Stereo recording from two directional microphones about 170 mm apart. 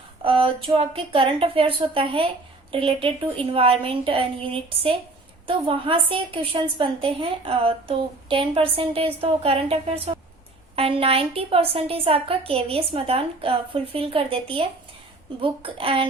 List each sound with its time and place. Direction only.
0.2 s a woman's voice: 30° right (ahead or behind)